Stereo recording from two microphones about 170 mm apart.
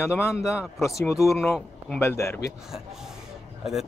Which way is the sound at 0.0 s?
15° left (ahead or behind).